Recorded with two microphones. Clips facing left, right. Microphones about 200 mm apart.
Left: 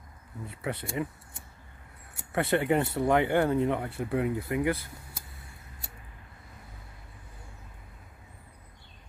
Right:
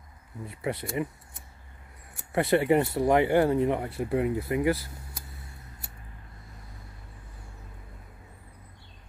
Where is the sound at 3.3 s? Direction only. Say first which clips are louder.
Right 3 dB; 5° right (ahead or behind).